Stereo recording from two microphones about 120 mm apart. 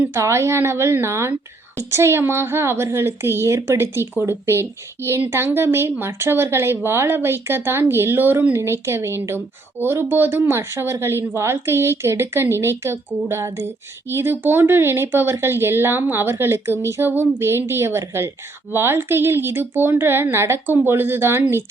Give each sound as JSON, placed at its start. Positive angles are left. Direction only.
{"t": 0.0, "sound": "a woman's voice", "side_deg": -20}